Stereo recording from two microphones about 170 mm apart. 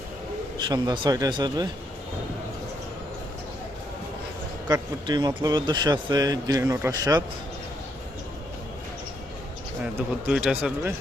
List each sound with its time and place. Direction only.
0.7 s speech: 25° right (ahead or behind)
4.7 s speech: 25° right (ahead or behind)
9.8 s speech: 5° right (ahead or behind)